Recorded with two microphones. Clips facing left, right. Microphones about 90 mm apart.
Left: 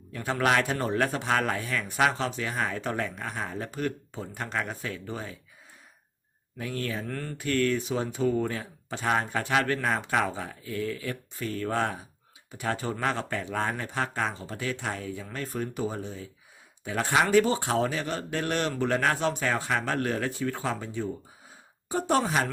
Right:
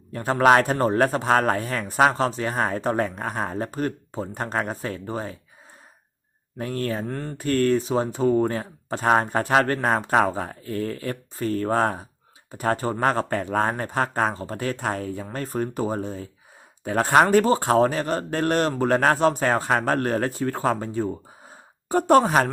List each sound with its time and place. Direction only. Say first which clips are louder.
0.1 s speech: right 8 dB; 40° right (ahead or behind)
6.6 s speech: right 6 dB; 40° right (ahead or behind)
7.1 s mantra: right 4 dB; 25° right (ahead or behind)
7.3 s speech: right 6 dB; 40° right (ahead or behind)
21.5 s a sound: right 8 dB; 50° right (ahead or behind)